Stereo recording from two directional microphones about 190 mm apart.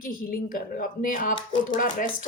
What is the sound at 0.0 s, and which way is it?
Speech, 50° left (ahead or behind).